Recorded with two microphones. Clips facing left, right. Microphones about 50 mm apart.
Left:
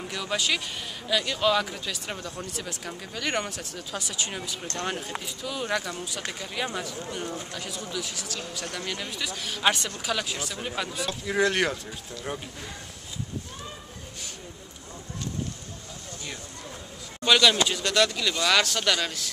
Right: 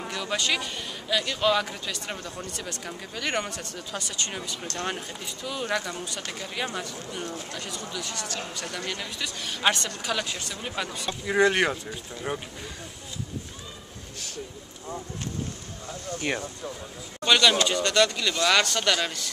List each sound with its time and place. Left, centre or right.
0.1 s speech: centre
12.1 s speech: centre
16.2 s speech: right
17.2 s a man's voice: centre